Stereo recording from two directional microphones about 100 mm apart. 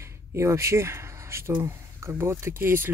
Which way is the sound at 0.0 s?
30° right (ahead or behind).